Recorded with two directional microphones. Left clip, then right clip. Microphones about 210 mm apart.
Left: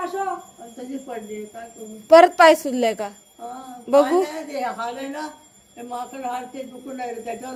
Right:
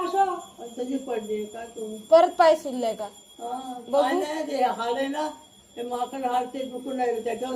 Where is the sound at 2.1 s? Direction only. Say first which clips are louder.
Left 6 dB; 50° left (ahead or behind).